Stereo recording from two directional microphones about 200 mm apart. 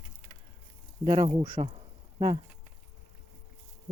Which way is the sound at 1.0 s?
20° right (ahead or behind).